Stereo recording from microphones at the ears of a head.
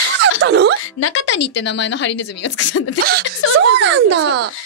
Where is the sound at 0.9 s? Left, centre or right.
Left.